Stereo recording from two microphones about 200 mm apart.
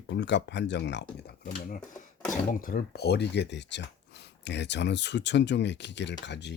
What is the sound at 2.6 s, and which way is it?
Speech, 45° left (ahead or behind).